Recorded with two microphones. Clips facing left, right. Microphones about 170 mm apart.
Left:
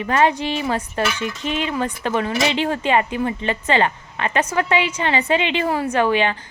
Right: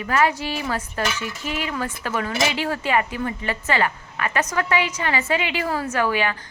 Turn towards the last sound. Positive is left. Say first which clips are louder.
# left 4 dB
turn(degrees=20)  # may be behind; listen again after turning